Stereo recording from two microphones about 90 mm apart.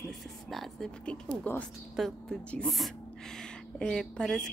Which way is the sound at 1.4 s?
15° left (ahead or behind).